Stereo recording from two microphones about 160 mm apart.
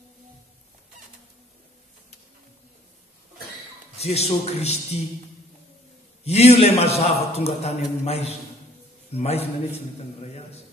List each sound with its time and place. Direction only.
4.0 s a man's voice: 40° left (ahead or behind)
6.2 s a man's voice: 40° left (ahead or behind)